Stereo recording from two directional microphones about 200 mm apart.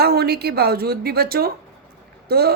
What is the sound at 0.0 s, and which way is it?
A woman's voice, 50° right (ahead or behind).